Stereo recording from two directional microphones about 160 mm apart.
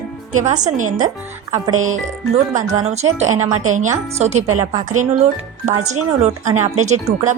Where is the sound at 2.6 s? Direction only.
45° right (ahead or behind).